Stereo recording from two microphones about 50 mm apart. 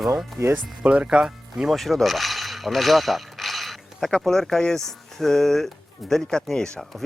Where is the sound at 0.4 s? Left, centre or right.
Right.